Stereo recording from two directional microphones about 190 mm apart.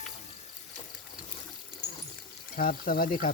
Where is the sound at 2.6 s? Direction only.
50° left (ahead or behind).